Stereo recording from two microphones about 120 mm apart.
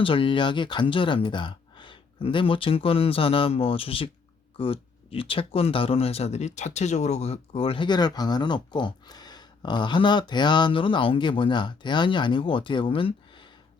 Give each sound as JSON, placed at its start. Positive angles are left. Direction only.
{"t": 0.0, "sound": "speech", "side_deg": 45}